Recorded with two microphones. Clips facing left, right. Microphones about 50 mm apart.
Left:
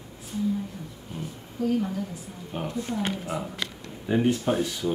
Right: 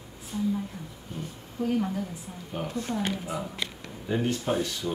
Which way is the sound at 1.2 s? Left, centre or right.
Centre.